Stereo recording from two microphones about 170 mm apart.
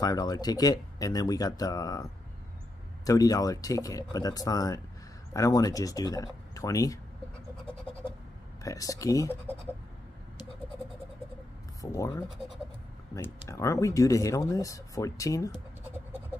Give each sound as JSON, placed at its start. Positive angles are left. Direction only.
{"t": 0.0, "sound": "speech", "side_deg": 25}
{"t": 3.1, "sound": "speech", "side_deg": 20}
{"t": 8.6, "sound": "speech", "side_deg": 20}
{"t": 11.8, "sound": "speech", "side_deg": 20}